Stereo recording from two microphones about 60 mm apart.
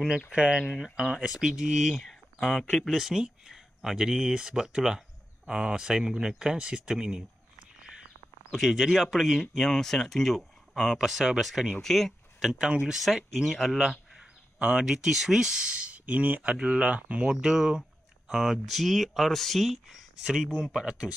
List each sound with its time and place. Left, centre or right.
0.3 s speech: centre
2.0 s speech: centre
8.5 s speech: centre
9.5 s speech: centre
11.0 s speech: centre
14.6 s speech: centre
17.3 s speech: centre
20.5 s speech: centre